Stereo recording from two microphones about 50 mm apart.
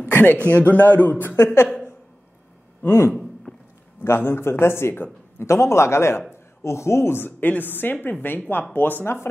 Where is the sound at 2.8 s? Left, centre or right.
Left.